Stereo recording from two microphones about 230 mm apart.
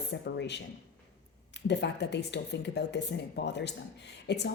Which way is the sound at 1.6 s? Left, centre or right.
Left.